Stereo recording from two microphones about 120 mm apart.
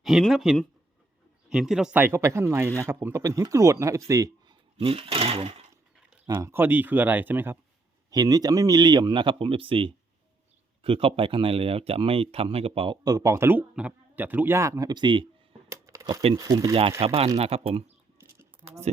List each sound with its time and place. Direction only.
0.0 s speech: centre (ahead or behind)
2.0 s a man's voice: 20° right (ahead or behind)
4.8 s speech: 50° right (ahead or behind)
6.2 s speech: 25° right (ahead or behind)
8.1 s speech: 30° right (ahead or behind); by 13.0 s 50° right (ahead or behind)
13.1 s a man's voice: 30° right (ahead or behind)
15.7 s typing: 25° right (ahead or behind)
16.3 s a man's voice: 30° right (ahead or behind)
17.0 s speech: 55° right (ahead or behind)
18.2 s a sound: 20° right (ahead or behind)